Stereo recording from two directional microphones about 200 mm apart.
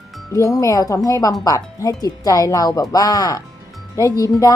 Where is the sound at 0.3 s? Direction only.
15° left (ahead or behind).